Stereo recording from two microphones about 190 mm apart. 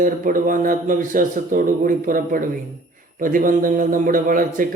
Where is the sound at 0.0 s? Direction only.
45° right (ahead or behind).